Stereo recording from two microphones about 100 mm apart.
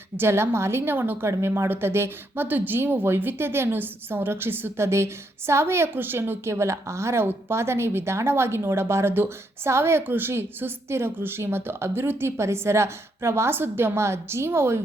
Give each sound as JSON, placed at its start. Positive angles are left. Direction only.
{"t": 0.2, "sound": "a woman's voice", "side_deg": -25}